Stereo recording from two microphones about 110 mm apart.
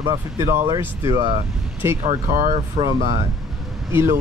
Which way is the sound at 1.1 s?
40° right (ahead or behind).